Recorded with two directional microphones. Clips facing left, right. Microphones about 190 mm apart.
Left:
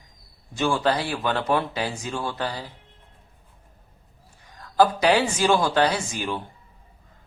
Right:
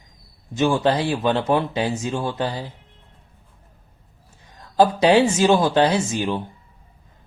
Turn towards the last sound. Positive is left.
turn(degrees=-20)  # may be behind; listen again after turning